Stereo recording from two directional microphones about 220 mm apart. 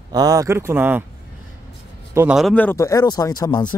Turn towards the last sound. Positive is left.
turn(degrees=15)  # may be behind; listen again after turning